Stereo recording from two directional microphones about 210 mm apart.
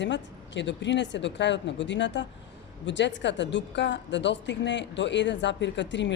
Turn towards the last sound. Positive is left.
turn(degrees=60)  # may be behind; listen again after turning